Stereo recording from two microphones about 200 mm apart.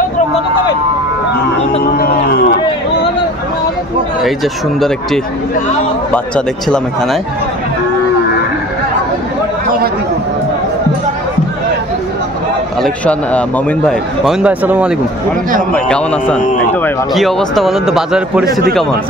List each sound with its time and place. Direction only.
2.0 s a sound: 50° left (ahead or behind)
4.7 s a man's voice: centre (ahead or behind)
12.8 s a man's voice: 5° left (ahead or behind)
15.7 s a man's voice: 5° left (ahead or behind)